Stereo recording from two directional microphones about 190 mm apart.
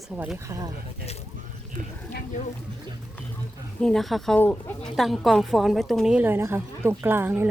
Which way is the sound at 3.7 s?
Centre (ahead or behind).